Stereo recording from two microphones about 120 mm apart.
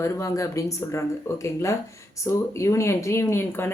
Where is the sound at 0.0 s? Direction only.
25° left (ahead or behind).